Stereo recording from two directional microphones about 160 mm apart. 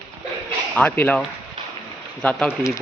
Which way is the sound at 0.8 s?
10° left (ahead or behind).